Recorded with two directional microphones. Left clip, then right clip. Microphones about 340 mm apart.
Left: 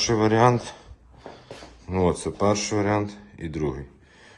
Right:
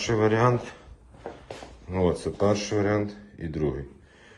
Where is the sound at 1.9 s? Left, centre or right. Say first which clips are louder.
Left 2 dB; centre.